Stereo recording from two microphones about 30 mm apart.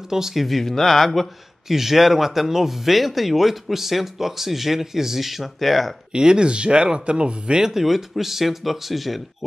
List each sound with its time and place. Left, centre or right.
0.1 s speech: centre
0.4 s speech: centre
1.7 s speech: centre
6.1 s speech: right
7.6 s speech: centre